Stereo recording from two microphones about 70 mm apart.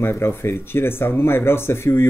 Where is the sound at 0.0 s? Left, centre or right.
Left.